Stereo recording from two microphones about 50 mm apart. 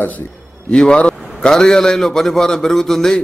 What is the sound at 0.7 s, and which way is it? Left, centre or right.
Vehicle, centre.